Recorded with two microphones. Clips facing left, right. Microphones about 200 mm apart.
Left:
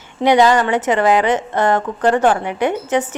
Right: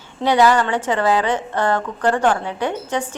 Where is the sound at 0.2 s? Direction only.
15° left (ahead or behind).